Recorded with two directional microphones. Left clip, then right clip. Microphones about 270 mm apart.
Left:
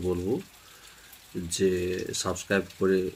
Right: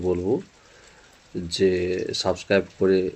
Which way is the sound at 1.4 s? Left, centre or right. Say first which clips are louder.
Right 5 dB; centre.